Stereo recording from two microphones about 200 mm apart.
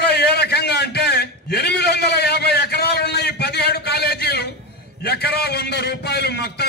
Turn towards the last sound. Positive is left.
turn(degrees=55)  # may be behind; listen again after turning